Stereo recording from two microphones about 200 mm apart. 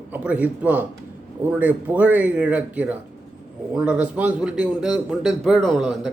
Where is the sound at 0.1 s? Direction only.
5° right (ahead or behind).